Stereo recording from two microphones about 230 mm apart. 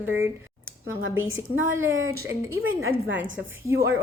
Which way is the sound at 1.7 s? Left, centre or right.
Centre.